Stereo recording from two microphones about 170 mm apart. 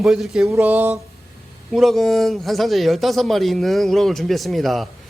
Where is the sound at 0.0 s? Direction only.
Centre (ahead or behind).